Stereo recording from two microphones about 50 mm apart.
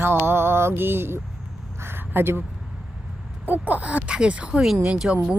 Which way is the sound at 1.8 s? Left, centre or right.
Right.